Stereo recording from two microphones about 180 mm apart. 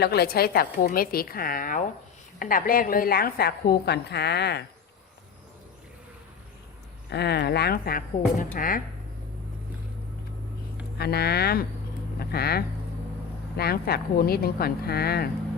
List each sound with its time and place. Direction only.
0.0 s a woman's voice: 60° left (ahead or behind)
7.1 s a woman's voice: 65° left (ahead or behind); by 8.8 s 50° left (ahead or behind)
10.9 s a woman's voice: 60° left (ahead or behind)